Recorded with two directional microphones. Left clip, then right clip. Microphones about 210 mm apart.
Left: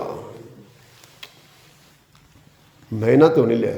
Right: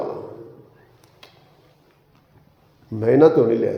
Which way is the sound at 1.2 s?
35° left (ahead or behind).